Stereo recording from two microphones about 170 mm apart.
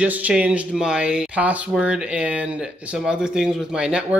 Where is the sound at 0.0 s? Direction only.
5° right (ahead or behind).